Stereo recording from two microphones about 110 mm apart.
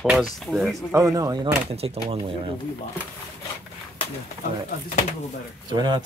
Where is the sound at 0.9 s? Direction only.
30° right (ahead or behind).